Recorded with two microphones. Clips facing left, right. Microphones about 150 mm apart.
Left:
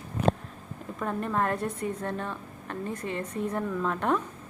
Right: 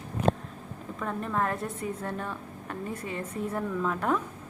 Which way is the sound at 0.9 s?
5° left (ahead or behind).